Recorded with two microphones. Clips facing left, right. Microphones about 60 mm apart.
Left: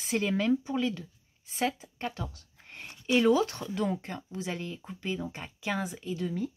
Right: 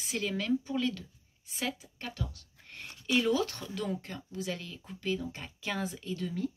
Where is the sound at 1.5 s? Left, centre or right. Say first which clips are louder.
Left 6 dB; left.